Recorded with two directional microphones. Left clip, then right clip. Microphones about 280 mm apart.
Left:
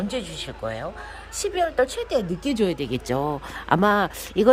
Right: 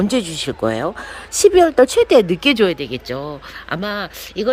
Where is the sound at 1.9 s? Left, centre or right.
Centre.